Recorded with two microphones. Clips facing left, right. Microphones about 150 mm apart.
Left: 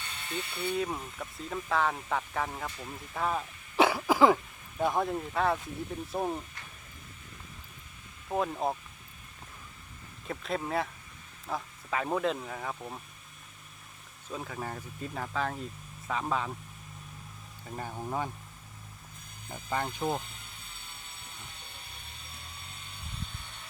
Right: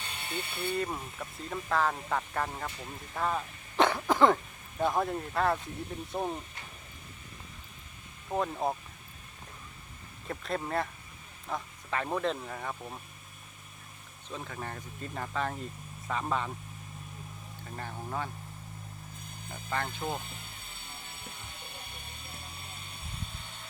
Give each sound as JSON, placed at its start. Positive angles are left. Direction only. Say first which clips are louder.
{"t": 0.0, "sound": "ratchet", "louder": "even", "side_deg": -25}
{"t": 0.7, "sound": "speech", "louder": "left 1 dB", "side_deg": 0}
{"t": 8.3, "sound": "speech", "louder": "even", "side_deg": 0}
{"t": 10.2, "sound": "speech", "louder": "left 1 dB", "side_deg": 0}
{"t": 14.3, "sound": "speech", "louder": "left 2 dB", "side_deg": 5}
{"t": 17.7, "sound": "speech", "louder": "left 3 dB", "side_deg": 10}
{"t": 19.5, "sound": "speech", "louder": "left 2 dB", "side_deg": 15}